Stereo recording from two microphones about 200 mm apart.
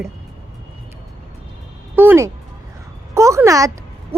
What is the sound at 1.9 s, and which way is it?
Speech, 10° right (ahead or behind).